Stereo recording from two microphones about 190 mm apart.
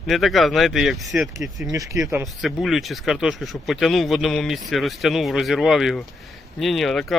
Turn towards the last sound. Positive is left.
turn(degrees=0)  # may be behind; listen again after turning